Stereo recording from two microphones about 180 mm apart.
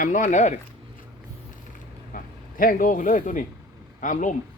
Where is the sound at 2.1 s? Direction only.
50° left (ahead or behind).